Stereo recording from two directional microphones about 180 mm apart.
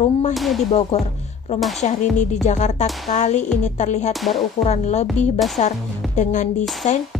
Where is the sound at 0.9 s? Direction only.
35° left (ahead or behind).